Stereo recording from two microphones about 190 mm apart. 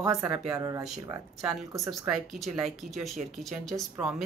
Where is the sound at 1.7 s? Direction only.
15° right (ahead or behind).